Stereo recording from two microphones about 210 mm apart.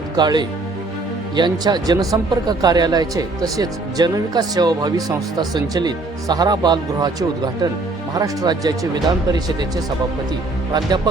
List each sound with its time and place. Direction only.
0.2 s speech: 20° right (ahead or behind)
10.7 s speech: 20° right (ahead or behind)